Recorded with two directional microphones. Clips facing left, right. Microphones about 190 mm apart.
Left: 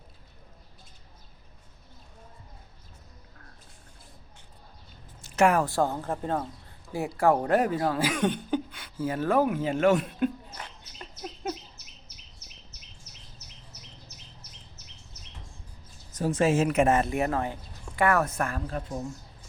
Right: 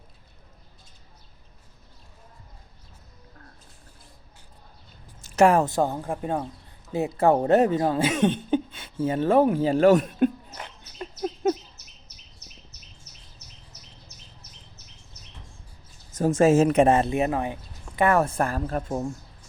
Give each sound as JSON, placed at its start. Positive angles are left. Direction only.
{"t": 5.4, "sound": "speech", "side_deg": -30}
{"t": 16.1, "sound": "speech", "side_deg": -45}
{"t": 18.7, "sound": "speech", "side_deg": -50}